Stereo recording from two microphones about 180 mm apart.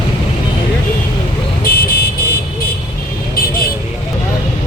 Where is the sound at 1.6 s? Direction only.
55° left (ahead or behind).